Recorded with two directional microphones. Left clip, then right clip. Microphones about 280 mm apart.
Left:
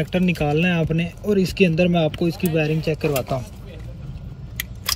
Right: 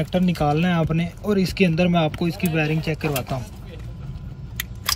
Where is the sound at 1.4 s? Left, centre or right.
Right.